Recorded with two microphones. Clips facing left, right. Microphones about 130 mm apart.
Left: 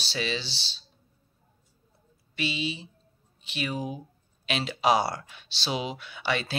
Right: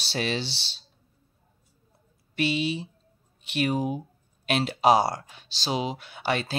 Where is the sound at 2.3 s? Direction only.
55° right (ahead or behind).